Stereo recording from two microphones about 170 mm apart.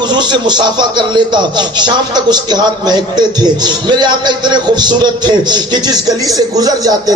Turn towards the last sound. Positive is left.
turn(degrees=-20)  # may be behind; listen again after turning